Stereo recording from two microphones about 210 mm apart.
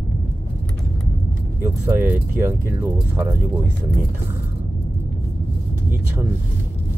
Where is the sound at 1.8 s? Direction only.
10° right (ahead or behind).